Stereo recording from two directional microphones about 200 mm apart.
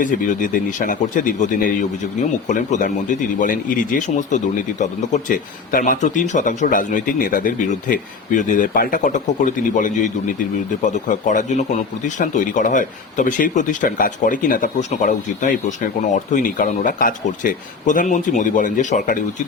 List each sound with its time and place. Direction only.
0.0 s speech: 40° left (ahead or behind)